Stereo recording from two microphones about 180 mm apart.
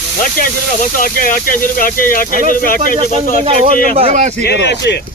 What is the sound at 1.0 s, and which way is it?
Speech, 50° left (ahead or behind).